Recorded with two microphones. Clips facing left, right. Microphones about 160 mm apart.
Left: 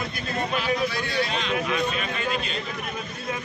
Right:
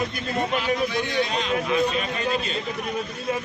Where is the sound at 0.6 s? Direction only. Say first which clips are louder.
Left 1 dB; 20° right (ahead or behind).